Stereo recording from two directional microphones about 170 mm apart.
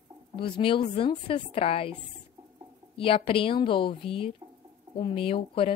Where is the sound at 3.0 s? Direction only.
35° left (ahead or behind).